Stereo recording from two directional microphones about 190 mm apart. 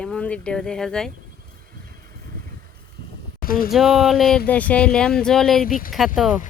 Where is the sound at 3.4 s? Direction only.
50° left (ahead or behind).